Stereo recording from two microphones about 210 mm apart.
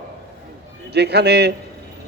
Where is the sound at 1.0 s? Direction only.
55° right (ahead or behind).